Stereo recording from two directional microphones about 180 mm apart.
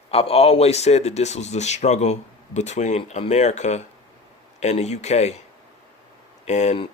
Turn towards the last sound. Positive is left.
turn(degrees=40)  # may be behind; listen again after turning